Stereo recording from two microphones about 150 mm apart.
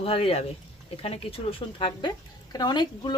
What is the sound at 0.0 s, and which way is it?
Speech, 40° left (ahead or behind).